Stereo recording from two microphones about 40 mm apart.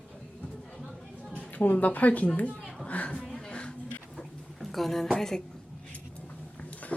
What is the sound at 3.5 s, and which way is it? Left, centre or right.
Music, left.